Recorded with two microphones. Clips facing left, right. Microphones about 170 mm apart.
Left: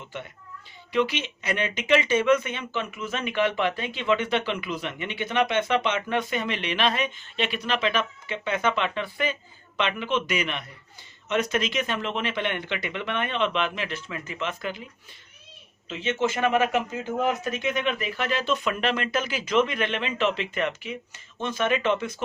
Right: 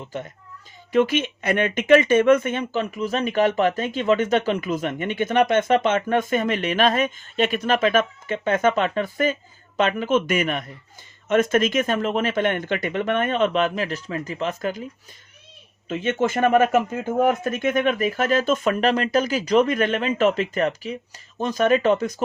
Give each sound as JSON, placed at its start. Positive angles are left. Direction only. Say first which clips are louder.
{"t": 0.1, "sound": "speech", "louder": "right 5 dB", "side_deg": -40}
{"t": 15.9, "sound": "speech", "louder": "right 4 dB", "side_deg": -50}